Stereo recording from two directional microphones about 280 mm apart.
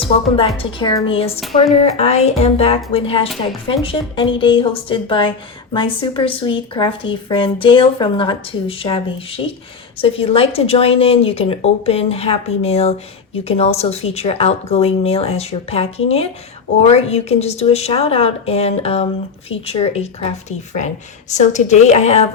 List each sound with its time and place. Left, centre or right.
0.3 s a woman's voice: centre
21.3 s a woman's voice: left